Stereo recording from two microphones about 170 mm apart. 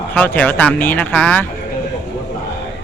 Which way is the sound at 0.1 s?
10° left (ahead or behind).